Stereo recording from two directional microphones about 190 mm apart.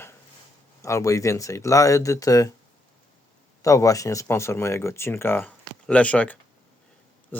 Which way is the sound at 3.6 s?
15° left (ahead or behind).